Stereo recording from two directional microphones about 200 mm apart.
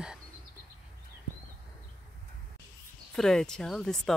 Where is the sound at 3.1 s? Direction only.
Centre (ahead or behind).